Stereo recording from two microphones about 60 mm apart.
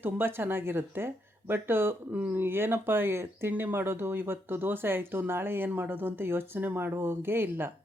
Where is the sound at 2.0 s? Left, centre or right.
Right.